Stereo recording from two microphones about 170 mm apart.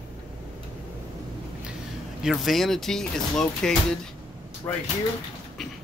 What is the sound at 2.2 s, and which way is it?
Speech, centre (ahead or behind).